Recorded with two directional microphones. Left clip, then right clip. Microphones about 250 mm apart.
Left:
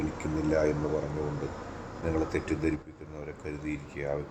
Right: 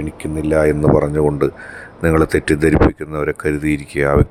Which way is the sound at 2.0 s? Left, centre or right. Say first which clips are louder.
Right 16 dB; right.